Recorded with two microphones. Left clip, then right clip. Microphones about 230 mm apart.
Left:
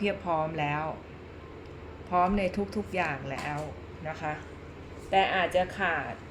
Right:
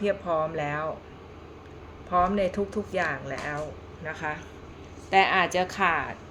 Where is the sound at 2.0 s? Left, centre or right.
Centre.